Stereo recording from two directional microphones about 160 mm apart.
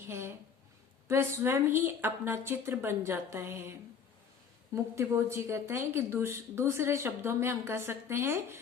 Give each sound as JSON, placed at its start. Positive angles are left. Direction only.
{"t": 0.1, "sound": "speech", "side_deg": -15}